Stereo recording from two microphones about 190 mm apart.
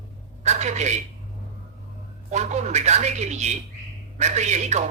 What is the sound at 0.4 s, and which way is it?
Speech, 35° right (ahead or behind).